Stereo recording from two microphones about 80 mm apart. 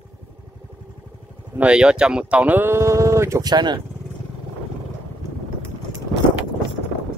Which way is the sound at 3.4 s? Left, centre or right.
Right.